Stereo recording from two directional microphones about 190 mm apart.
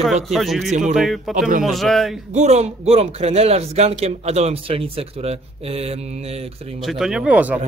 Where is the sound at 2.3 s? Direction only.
35° right (ahead or behind).